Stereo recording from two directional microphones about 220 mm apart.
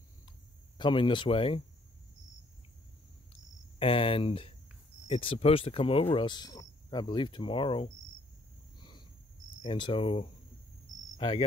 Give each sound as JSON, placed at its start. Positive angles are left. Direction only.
{"t": 0.7, "sound": "speech", "side_deg": 20}
{"t": 3.8, "sound": "speech", "side_deg": 25}
{"t": 8.7, "sound": "owl", "side_deg": 20}
{"t": 9.6, "sound": "speech", "side_deg": 25}
{"t": 11.1, "sound": "cricket", "side_deg": 25}